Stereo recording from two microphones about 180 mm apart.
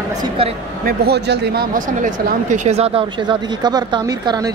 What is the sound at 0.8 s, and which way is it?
A woman's voice, 60° right (ahead or behind).